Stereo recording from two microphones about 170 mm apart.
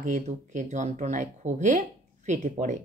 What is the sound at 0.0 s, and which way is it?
A woman's voice, 50° right (ahead or behind).